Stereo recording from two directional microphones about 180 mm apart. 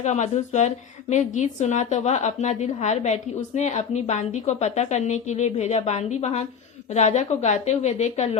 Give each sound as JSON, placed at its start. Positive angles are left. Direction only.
{"t": 0.0, "sound": "a woman's voice", "side_deg": 40}